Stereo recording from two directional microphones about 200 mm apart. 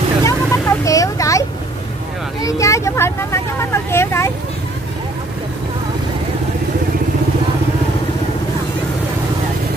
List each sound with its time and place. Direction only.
0.2 s vehicle: 15° left (ahead or behind)
2.4 s speech: 15° left (ahead or behind)